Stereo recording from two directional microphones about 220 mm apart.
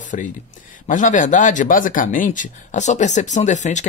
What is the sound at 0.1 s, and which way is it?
Speech, 35° left (ahead or behind).